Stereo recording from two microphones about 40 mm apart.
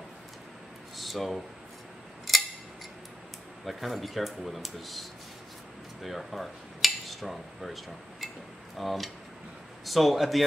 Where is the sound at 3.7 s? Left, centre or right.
Centre.